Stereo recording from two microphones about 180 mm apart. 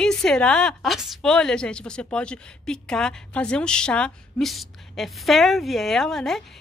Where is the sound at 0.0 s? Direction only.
5° left (ahead or behind).